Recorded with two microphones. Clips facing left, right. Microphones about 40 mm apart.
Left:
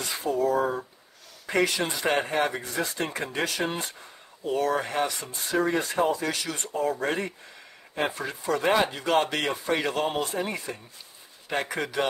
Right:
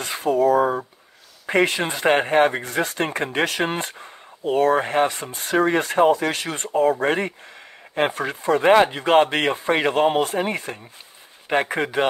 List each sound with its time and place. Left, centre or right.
0.0 s speech: right
1.4 s speech: right
5.3 s speech: right